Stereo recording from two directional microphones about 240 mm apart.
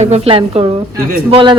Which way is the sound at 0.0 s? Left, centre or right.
Right.